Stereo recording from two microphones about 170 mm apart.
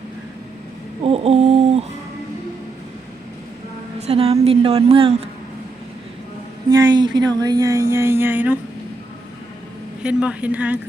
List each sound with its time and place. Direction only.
1.0 s a sound: 35° right (ahead or behind)
4.0 s speech: 35° right (ahead or behind)
6.7 s speech: 20° right (ahead or behind)
10.0 s speech: 5° right (ahead or behind)